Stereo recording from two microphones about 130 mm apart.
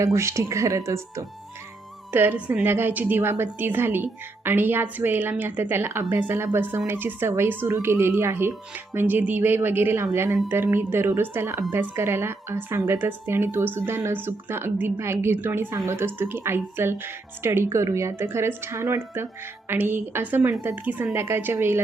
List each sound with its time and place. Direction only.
0.0 s a woman's voice: 20° right (ahead or behind)